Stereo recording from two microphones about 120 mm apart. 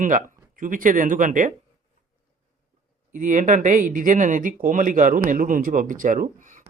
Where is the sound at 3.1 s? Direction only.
90° right.